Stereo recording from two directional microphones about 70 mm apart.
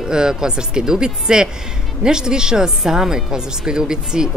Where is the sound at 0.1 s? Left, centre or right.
Centre.